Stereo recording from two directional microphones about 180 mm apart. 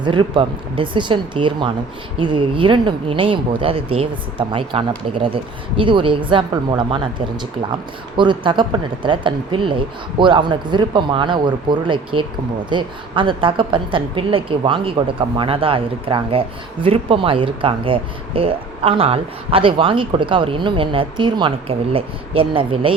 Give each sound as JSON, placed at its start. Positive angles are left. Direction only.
{"t": 0.0, "sound": "a woman's voice", "side_deg": -30}